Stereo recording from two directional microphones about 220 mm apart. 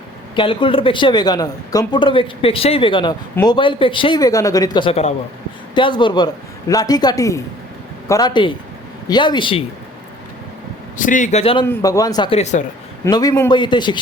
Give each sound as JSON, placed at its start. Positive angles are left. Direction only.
{"t": 0.3, "sound": "a woman's voice", "side_deg": 25}
{"t": 11.0, "sound": "speech", "side_deg": 35}
{"t": 11.6, "sound": "a woman's voice", "side_deg": 15}
{"t": 13.1, "sound": "a woman's voice", "side_deg": 15}